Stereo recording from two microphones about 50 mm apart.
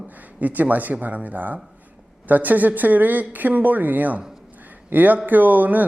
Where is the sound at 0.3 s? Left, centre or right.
Right.